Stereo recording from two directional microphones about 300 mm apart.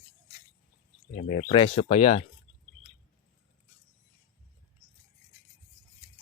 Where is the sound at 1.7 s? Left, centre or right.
Left.